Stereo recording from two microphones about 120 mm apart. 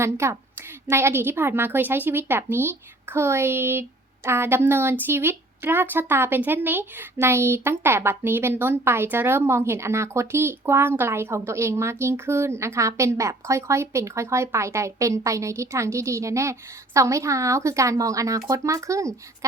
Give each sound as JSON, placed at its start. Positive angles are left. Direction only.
{"t": 0.0, "sound": "speech", "side_deg": -20}